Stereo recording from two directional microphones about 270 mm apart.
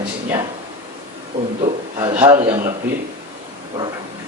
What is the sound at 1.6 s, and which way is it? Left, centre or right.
Speech, centre.